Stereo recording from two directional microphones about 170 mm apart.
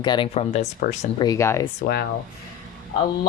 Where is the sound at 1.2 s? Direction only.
20° left (ahead or behind).